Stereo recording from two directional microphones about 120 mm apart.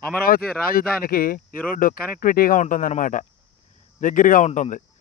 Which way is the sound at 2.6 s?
85° left.